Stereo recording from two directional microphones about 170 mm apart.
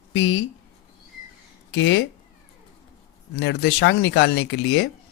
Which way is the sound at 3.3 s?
90° left.